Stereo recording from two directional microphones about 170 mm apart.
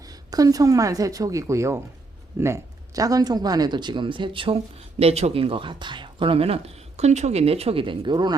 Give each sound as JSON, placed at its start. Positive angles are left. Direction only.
{"t": 0.1, "sound": "speech", "side_deg": -20}